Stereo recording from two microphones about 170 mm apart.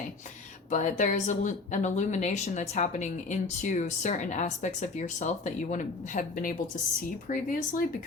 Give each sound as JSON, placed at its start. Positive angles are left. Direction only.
{"t": 0.7, "sound": "speech", "side_deg": 45}